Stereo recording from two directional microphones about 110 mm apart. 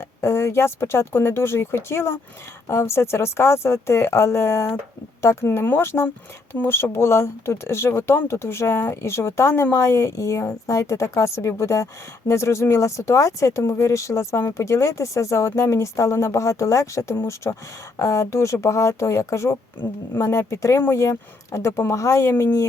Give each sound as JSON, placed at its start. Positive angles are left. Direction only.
{"t": 0.2, "sound": "speech", "side_deg": 25}